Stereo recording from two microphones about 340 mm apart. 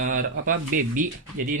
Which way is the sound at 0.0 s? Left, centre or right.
Right.